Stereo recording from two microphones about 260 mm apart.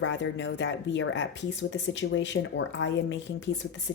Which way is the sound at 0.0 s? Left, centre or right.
Left.